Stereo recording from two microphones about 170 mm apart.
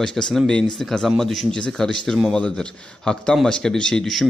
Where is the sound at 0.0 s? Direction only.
5° left (ahead or behind).